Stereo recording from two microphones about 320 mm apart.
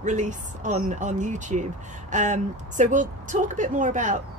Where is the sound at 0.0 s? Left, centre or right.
Right.